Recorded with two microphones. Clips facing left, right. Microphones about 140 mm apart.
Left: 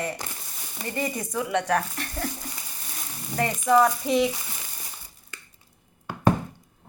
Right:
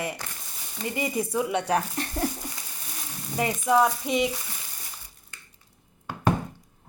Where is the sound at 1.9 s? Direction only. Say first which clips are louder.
Right 4 dB; 25° right (ahead or behind).